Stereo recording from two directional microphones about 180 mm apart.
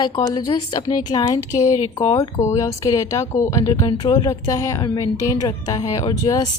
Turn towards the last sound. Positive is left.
turn(degrees=20)  # may be behind; listen again after turning